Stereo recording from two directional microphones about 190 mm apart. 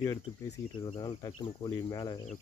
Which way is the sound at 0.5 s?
30° left (ahead or behind).